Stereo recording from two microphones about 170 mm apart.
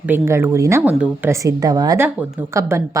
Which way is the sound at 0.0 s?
15° right (ahead or behind).